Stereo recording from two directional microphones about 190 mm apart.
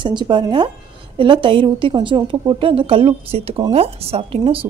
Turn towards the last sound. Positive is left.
turn(degrees=-30)  # may be behind; listen again after turning